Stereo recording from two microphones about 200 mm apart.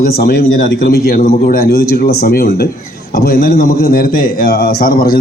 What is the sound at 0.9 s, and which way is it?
A man's voice, 45° left (ahead or behind).